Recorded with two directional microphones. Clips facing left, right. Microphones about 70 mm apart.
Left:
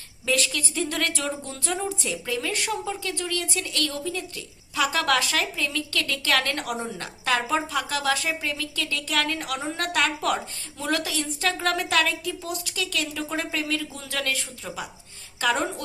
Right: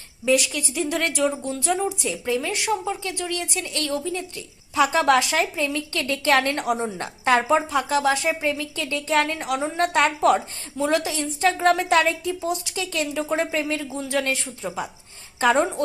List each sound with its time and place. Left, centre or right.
0.3 s speech: centre